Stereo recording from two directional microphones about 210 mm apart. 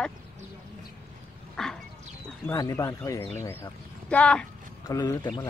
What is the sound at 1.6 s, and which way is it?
Dog, 5° left (ahead or behind).